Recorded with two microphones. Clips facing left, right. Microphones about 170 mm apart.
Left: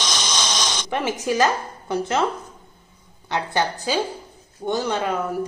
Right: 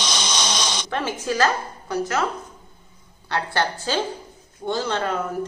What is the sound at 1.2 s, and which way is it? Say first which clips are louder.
A woman's voice: left 1 dB; 15° left (ahead or behind).